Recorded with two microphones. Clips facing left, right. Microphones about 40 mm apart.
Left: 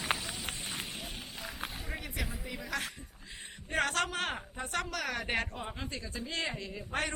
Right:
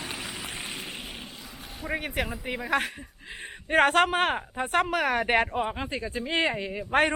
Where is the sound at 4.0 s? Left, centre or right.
Right.